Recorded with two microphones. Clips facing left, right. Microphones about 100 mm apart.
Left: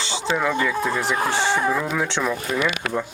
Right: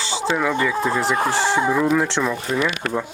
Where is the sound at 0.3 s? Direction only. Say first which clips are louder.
Right 1 dB; centre (ahead or behind).